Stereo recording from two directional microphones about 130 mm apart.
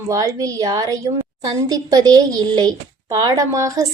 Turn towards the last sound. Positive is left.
turn(degrees=-25)  # may be behind; listen again after turning